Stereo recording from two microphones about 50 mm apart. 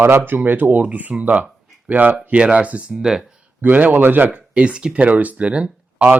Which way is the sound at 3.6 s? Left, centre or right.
Right.